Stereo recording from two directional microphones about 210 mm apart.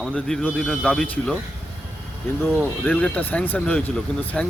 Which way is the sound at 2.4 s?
10° left (ahead or behind).